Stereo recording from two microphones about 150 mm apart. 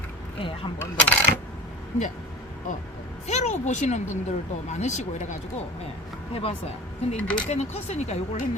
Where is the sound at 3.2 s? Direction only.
50° left (ahead or behind).